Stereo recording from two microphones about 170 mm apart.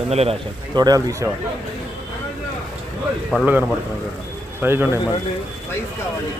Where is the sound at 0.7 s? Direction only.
25° right (ahead or behind).